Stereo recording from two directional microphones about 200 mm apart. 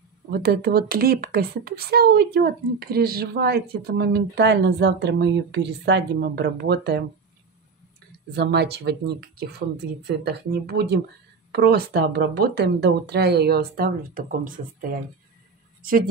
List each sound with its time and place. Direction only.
0.3 s speech: 50° right (ahead or behind)
8.4 s speech: 55° right (ahead or behind)